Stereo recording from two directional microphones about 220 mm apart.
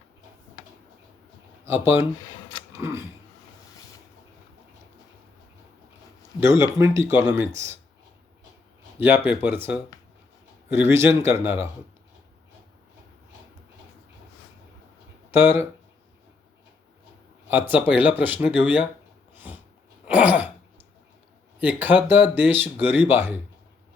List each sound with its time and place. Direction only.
1.6 s speech: 10° right (ahead or behind)
6.6 s speech: 10° right (ahead or behind)
9.0 s speech: 10° right (ahead or behind)
10.8 s speech: 10° right (ahead or behind)
15.3 s speech: 10° right (ahead or behind)
17.5 s speech: 10° right (ahead or behind)
19.3 s a sound: 10° right (ahead or behind)
20.1 s throat clearing: 5° right (ahead or behind)
21.6 s speech: 10° right (ahead or behind)